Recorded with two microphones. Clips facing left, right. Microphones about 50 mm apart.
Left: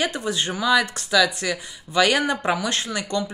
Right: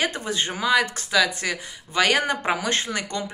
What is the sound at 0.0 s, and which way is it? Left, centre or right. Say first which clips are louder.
A woman's voice: left 1 dB; right.